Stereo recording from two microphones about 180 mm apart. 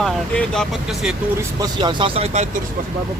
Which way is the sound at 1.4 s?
20° right (ahead or behind).